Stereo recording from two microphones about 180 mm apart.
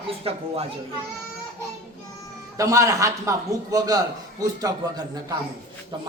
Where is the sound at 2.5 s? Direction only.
20° right (ahead or behind).